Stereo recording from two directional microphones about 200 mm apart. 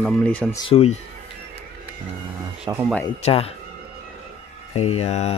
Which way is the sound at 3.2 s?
30° left (ahead or behind).